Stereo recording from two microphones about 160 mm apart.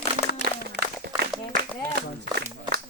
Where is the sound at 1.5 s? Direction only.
70° right (ahead or behind).